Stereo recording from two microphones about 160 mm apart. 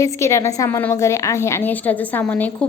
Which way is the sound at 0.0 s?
15° left (ahead or behind).